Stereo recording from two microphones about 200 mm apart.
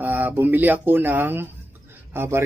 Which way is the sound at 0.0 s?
10° right (ahead or behind).